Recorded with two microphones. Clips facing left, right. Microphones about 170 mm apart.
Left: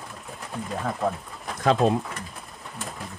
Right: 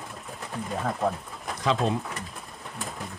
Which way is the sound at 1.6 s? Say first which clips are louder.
Left 5 dB; 50° left (ahead or behind).